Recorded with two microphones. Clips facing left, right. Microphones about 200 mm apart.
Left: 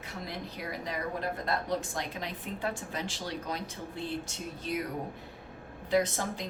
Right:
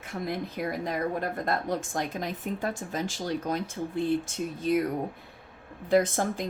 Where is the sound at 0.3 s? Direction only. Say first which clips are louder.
Right 8 dB; 50° right (ahead or behind).